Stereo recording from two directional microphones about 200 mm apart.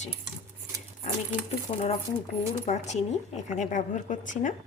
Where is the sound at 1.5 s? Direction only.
30° left (ahead or behind).